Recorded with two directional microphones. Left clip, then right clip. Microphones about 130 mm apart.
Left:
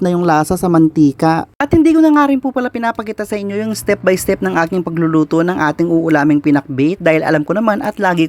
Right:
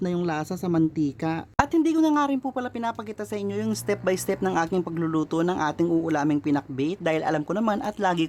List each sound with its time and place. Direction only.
0.0 s speech: 40° left (ahead or behind)